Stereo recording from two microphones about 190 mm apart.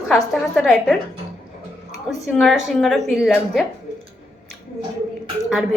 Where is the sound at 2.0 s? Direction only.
Centre (ahead or behind).